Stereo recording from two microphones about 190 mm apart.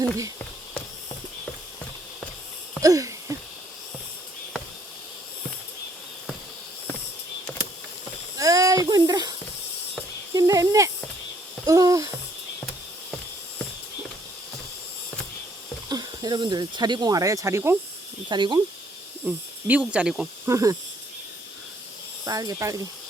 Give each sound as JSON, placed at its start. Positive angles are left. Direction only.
{"t": 2.8, "sound": "a sound", "side_deg": -15}
{"t": 8.4, "sound": "a sound", "side_deg": -20}
{"t": 10.3, "sound": "snake", "side_deg": -20}
{"t": 11.6, "sound": "babbling", "side_deg": -15}
{"t": 15.9, "sound": "speech", "side_deg": -20}
{"t": 18.3, "sound": "speech", "side_deg": -25}
{"t": 19.3, "sound": "speech", "side_deg": -5}
{"t": 20.5, "sound": "speech", "side_deg": -15}
{"t": 22.2, "sound": "speech", "side_deg": -20}